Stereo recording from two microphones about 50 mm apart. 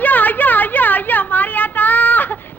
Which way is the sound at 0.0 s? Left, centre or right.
Left.